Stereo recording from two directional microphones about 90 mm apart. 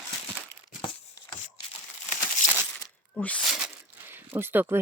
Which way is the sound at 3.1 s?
15° left (ahead or behind).